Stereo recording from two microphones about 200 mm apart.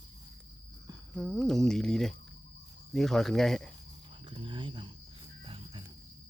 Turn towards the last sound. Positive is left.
turn(degrees=-25)  # may be behind; listen again after turning